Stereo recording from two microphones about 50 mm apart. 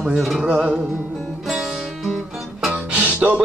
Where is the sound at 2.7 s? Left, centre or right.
Right.